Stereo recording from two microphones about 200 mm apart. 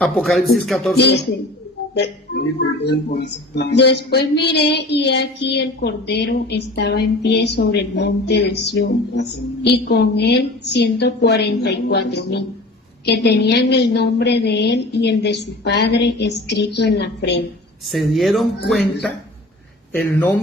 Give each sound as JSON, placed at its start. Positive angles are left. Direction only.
{"t": 0.0, "sound": "speech", "side_deg": 0}
{"t": 0.9, "sound": "speech", "side_deg": 60}
{"t": 17.8, "sound": "speech", "side_deg": 0}
{"t": 19.9, "sound": "speech", "side_deg": 10}